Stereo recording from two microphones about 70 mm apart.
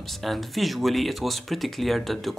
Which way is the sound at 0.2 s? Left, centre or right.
Centre.